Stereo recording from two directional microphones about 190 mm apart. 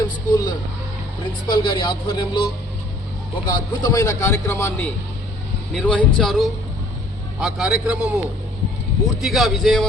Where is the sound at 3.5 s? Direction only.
20° left (ahead or behind).